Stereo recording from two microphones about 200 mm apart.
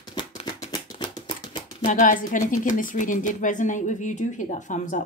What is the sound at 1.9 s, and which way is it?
Speech, 40° left (ahead or behind).